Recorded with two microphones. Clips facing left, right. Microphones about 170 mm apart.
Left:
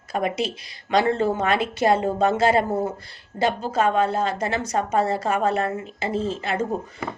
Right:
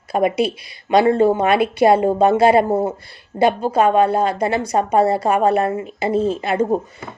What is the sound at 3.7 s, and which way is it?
A woman's voice, 10° right (ahead or behind).